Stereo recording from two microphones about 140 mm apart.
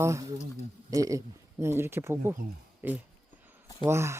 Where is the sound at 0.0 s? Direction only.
20° right (ahead or behind).